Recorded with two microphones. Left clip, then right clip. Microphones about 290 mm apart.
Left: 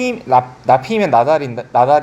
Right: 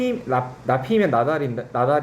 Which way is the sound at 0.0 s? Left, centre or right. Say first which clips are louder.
Left 9 dB; left.